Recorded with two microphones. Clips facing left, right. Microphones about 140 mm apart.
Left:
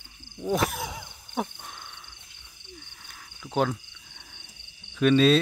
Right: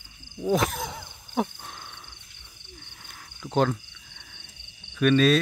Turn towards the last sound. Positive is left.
turn(degrees=20)  # may be behind; listen again after turning